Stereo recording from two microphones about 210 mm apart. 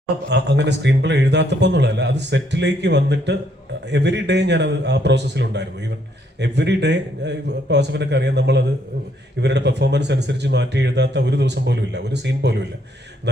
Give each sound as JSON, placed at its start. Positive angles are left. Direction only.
{"t": 0.3, "sound": "speech", "side_deg": -55}